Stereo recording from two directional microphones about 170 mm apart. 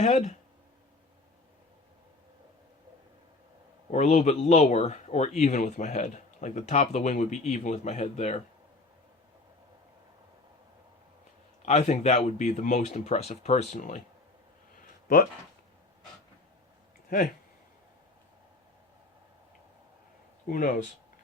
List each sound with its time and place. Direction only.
0.0 s speech: 40° left (ahead or behind)
3.9 s speech: 40° left (ahead or behind)
11.6 s speech: 40° left (ahead or behind)
15.0 s speech: 55° left (ahead or behind)
20.5 s speech: 50° left (ahead or behind)